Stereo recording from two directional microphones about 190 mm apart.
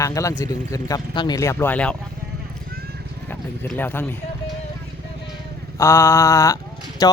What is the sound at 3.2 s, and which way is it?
Speech, 10° left (ahead or behind).